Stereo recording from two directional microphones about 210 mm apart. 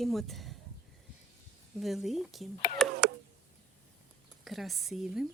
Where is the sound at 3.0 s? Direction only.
50° right (ahead or behind).